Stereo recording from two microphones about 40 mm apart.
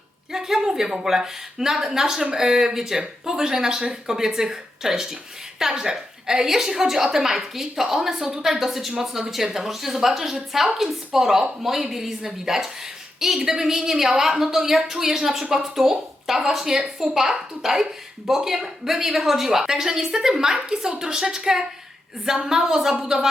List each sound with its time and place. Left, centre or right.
0.3 s a woman's voice: centre